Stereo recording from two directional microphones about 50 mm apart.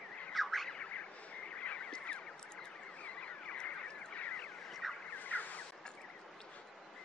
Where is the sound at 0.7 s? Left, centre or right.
Left.